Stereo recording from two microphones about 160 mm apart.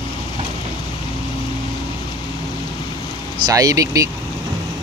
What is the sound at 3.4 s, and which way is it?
Speech, 20° right (ahead or behind).